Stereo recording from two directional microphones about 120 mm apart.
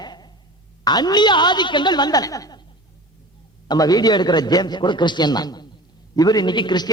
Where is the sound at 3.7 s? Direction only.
35° left (ahead or behind).